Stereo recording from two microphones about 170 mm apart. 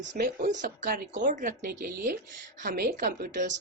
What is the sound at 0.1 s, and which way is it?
A woman's voice, 50° right (ahead or behind).